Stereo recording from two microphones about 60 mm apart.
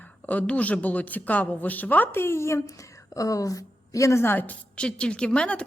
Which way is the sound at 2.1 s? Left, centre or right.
Left.